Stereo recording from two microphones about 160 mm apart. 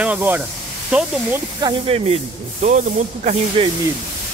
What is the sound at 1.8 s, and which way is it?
Speech, 40° right (ahead or behind).